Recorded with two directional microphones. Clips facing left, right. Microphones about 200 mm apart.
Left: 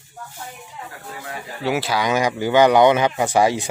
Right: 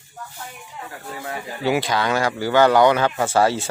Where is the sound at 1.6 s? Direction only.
5° left (ahead or behind).